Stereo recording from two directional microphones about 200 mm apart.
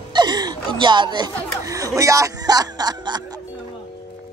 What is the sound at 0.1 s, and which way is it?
Speech, 20° right (ahead or behind).